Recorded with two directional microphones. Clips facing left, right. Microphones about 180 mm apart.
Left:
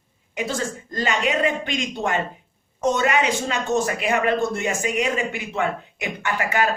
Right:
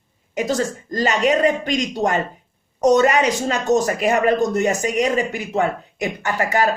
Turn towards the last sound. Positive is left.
turn(degrees=-40)  # may be behind; listen again after turning